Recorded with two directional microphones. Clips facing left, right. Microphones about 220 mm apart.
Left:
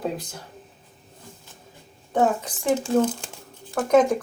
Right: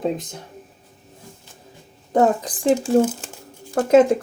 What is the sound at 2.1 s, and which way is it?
Speech, 40° right (ahead or behind).